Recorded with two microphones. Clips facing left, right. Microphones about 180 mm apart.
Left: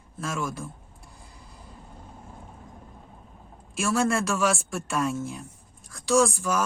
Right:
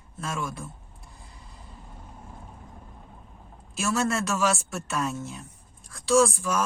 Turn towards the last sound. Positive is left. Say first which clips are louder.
# right 1 dB
turn(degrees=0)  # may be behind; listen again after turning